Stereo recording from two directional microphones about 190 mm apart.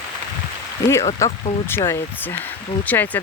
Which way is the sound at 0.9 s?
15° left (ahead or behind).